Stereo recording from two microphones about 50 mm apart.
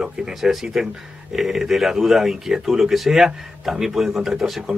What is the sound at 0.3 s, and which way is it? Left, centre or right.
Speech, centre.